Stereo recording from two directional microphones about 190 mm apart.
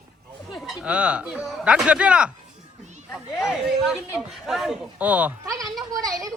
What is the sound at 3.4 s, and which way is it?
Speech, 5° right (ahead or behind).